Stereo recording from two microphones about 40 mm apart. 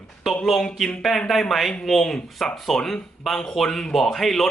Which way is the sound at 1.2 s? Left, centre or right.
Centre.